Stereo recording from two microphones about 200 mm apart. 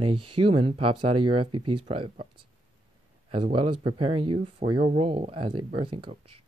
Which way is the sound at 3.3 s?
25° right (ahead or behind).